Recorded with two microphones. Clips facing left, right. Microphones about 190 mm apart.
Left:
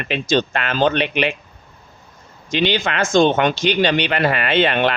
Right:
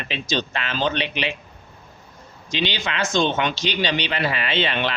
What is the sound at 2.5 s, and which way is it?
Speech, 50° left (ahead or behind).